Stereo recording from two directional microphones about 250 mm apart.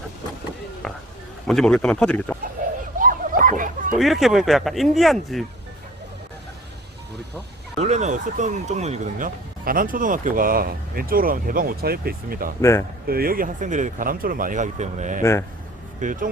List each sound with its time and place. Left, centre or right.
1.5 s speech: centre
3.0 s bow-wow: right
3.9 s speech: centre
7.8 s speech: right
15.2 s speech: centre
16.0 s speech: right